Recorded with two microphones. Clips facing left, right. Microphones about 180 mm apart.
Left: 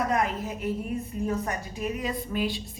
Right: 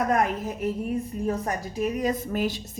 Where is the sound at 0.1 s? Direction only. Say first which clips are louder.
Right 3 dB; 45° right (ahead or behind).